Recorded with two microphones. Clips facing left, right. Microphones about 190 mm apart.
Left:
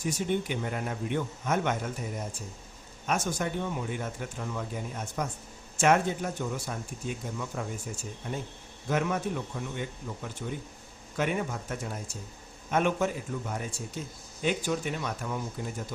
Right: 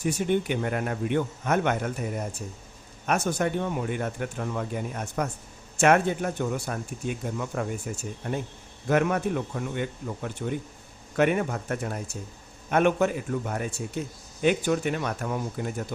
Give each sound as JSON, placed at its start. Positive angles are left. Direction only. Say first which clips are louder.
{"t": 0.0, "sound": "a man's voice", "louder": "right 4 dB", "side_deg": -60}